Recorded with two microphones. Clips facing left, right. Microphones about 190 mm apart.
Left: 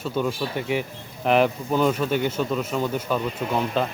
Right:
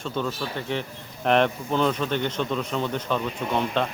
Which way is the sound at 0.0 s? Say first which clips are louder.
Left 3 dB; 10° left (ahead or behind).